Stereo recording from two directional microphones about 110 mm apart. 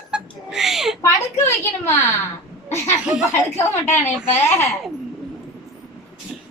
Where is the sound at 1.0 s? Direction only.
25° left (ahead or behind).